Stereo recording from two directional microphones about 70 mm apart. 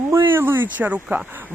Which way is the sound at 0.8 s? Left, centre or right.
Right.